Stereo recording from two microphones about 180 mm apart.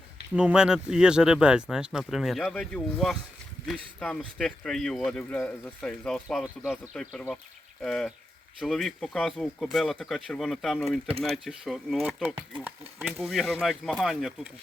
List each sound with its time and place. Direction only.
0.3 s speech: 5° right (ahead or behind)
12.3 s speech: 25° right (ahead or behind)
13.0 s speech: centre (ahead or behind)